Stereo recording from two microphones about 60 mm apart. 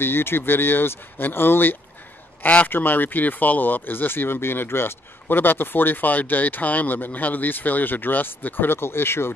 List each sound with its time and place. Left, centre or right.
0.0 s speech: left